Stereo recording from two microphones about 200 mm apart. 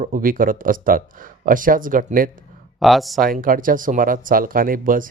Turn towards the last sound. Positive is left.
turn(degrees=-45)  # may be behind; listen again after turning